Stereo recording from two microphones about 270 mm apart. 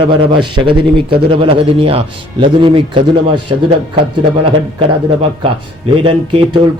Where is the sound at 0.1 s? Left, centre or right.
Centre.